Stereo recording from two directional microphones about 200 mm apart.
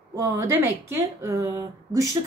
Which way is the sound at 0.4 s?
15° right (ahead or behind).